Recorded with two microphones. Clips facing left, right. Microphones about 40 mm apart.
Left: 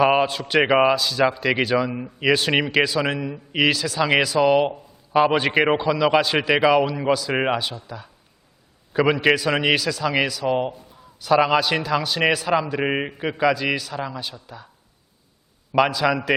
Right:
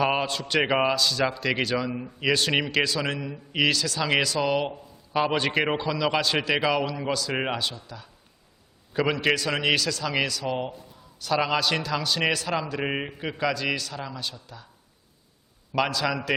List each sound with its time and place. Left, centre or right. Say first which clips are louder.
0.0 s a man's voice: left 7 dB; centre
15.7 s a man's voice: left 6 dB; centre